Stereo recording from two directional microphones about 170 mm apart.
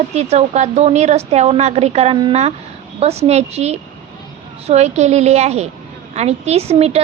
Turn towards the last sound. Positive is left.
turn(degrees=-35)  # may be behind; listen again after turning